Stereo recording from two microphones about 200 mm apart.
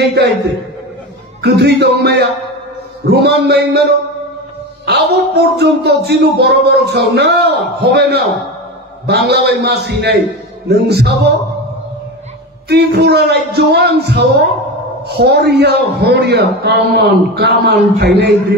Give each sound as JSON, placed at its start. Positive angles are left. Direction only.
{"t": 0.0, "sound": "a man's voice", "side_deg": -55}
{"t": 1.4, "sound": "speech", "side_deg": -55}
{"t": 4.8, "sound": "speech", "side_deg": -55}
{"t": 12.6, "sound": "speech", "side_deg": -55}